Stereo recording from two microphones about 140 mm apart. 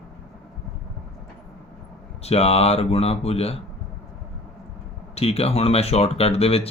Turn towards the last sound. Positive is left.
turn(degrees=45)  # may be behind; listen again after turning